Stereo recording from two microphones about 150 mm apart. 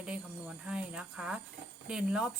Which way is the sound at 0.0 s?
5° right (ahead or behind).